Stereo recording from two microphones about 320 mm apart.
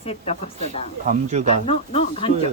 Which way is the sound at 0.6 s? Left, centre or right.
Right.